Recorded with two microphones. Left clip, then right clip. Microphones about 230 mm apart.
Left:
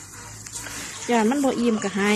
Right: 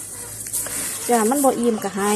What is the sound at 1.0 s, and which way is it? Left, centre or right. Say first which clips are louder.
Speech: right 4 dB; centre.